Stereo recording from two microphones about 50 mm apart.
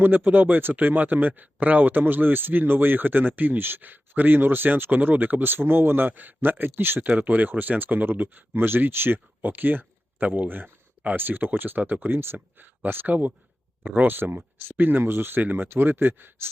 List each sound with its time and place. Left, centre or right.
0.0 s speech: right
7.0 s speech: right